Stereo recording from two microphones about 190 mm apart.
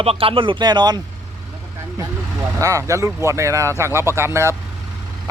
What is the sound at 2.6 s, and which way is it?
Speech, 15° right (ahead or behind).